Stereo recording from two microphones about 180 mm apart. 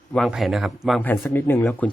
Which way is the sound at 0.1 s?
Centre (ahead or behind).